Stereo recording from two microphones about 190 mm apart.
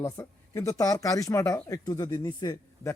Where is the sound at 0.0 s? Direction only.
15° left (ahead or behind).